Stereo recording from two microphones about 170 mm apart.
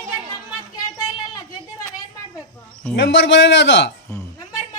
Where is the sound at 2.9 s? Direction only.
90° left.